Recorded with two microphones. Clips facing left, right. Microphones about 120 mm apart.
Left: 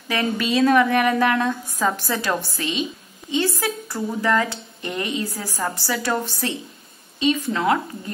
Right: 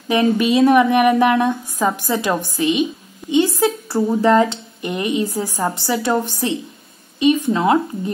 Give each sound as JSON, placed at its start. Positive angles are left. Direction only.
{"t": 0.1, "sound": "a woman's voice", "side_deg": -20}